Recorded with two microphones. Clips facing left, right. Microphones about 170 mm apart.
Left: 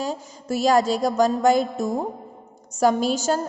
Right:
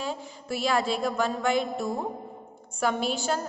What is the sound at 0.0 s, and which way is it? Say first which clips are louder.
A woman's voice: left 5 dB; 40° left (ahead or behind).